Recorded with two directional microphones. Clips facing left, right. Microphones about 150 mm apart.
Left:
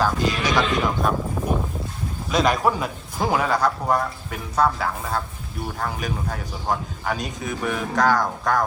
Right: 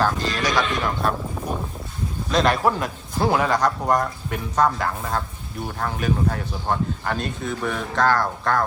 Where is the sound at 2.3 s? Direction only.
5° left (ahead or behind).